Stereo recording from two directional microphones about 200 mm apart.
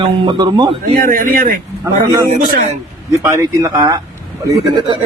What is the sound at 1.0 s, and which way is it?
Speech, 45° right (ahead or behind).